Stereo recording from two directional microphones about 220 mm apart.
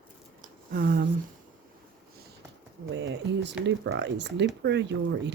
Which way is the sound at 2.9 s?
55° right (ahead or behind).